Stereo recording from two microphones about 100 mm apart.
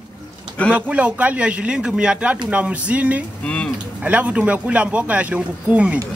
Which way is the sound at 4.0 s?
15° right (ahead or behind).